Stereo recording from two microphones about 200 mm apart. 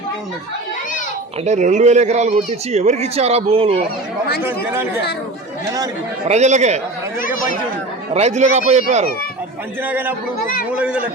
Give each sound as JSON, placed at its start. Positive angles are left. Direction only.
{"t": 1.5, "sound": "speech", "side_deg": -35}
{"t": 4.4, "sound": "speech", "side_deg": -10}
{"t": 6.2, "sound": "speech", "side_deg": -35}
{"t": 7.2, "sound": "chatter", "side_deg": 45}
{"t": 8.1, "sound": "speech", "side_deg": -35}
{"t": 9.8, "sound": "speech", "side_deg": -10}
{"t": 10.4, "sound": "speech", "side_deg": 45}
{"t": 10.7, "sound": "speech", "side_deg": -5}